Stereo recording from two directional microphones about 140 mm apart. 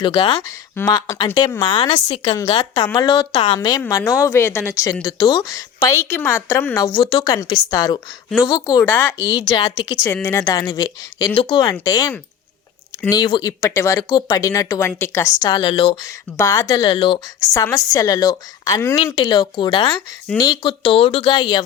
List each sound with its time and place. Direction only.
0.0 s speech: 35° left (ahead or behind)
0.4 s a woman's voice: 25° left (ahead or behind)
3.3 s a woman's voice: 40° left (ahead or behind)
8.9 s speech: 15° left (ahead or behind)
9.3 s speech: 35° left (ahead or behind)
10.2 s a woman's voice: 20° left (ahead or behind); by 16.0 s 35° left (ahead or behind)
16.0 s a woman's voice: 25° left (ahead or behind)
16.8 s speech: 40° left (ahead or behind)
17.4 s a woman's voice: 20° left (ahead or behind)